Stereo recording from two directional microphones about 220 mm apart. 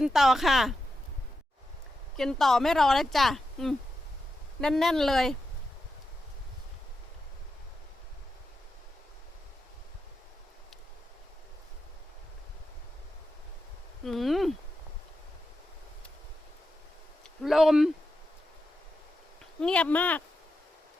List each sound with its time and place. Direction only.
0.0 s speech: centre (ahead or behind)
2.1 s speech: centre (ahead or behind)
14.0 s speech: centre (ahead or behind)
17.4 s speech: centre (ahead or behind)
19.5 s speech: 5° left (ahead or behind)